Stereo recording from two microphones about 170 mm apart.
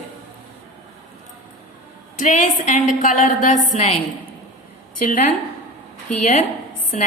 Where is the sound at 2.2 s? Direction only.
50° left (ahead or behind).